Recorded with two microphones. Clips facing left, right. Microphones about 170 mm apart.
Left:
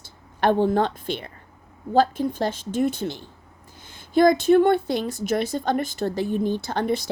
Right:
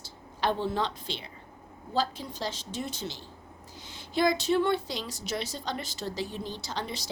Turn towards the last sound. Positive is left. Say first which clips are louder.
# left 11 dB
turn(degrees=55)  # may be behind; listen again after turning